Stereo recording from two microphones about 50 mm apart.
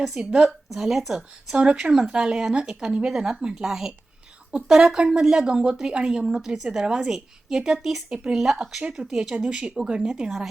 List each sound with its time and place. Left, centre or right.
0.2 s speech: right
0.7 s a woman's voice: centre
1.5 s a woman's voice: centre